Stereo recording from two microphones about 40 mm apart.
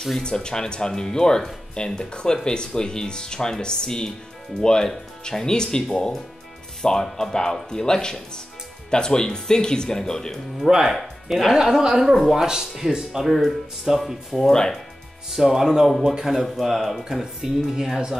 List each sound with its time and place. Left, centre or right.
0.2 s speech: left
10.7 s speech: centre
11.0 s speech: centre
14.5 s speech: centre
15.3 s speech: centre
17.4 s speech: centre